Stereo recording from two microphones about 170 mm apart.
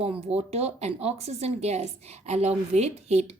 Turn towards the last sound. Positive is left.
turn(degrees=-40)  # may be behind; listen again after turning